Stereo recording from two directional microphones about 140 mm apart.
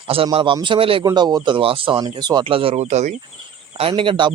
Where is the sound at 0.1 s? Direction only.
40° right (ahead or behind); by 3.2 s 55° right (ahead or behind).